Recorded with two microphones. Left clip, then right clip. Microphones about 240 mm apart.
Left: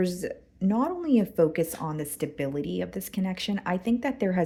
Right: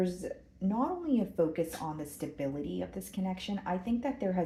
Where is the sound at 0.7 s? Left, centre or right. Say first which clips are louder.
Left 6 dB; left.